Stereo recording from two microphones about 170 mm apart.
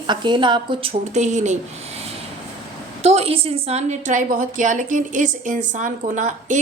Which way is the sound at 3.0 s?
40° right (ahead or behind).